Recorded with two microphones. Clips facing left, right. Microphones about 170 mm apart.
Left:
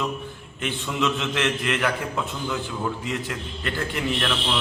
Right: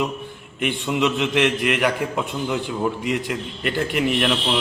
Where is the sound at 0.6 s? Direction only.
15° right (ahead or behind).